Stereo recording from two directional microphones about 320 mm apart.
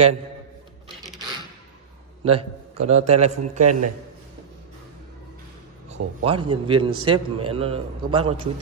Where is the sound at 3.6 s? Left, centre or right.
Right.